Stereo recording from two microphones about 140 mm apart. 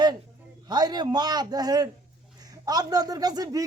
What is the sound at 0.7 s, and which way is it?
A man's voice, 30° right (ahead or behind).